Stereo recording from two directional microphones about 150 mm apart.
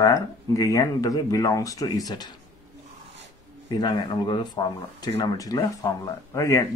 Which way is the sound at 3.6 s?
25° left (ahead or behind).